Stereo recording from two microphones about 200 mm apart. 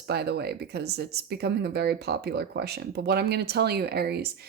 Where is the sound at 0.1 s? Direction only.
55° right (ahead or behind).